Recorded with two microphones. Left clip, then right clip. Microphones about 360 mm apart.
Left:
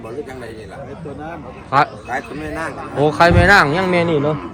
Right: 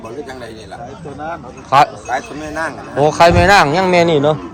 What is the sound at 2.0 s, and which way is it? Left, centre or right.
Speech, right.